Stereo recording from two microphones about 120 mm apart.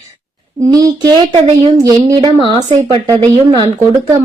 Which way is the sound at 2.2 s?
40° right (ahead or behind).